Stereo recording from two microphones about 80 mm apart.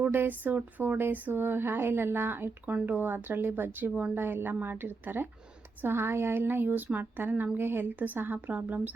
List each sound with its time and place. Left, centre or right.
0.1 s speech: right